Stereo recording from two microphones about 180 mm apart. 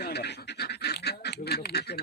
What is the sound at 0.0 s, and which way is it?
Duck, 65° left (ahead or behind).